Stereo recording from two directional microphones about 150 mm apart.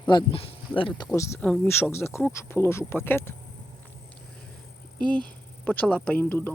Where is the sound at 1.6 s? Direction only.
15° left (ahead or behind).